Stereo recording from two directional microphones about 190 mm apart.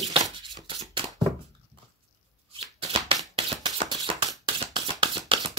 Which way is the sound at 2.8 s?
30° right (ahead or behind).